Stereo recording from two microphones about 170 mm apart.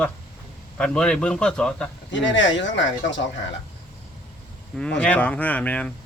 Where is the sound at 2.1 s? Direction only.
90° left.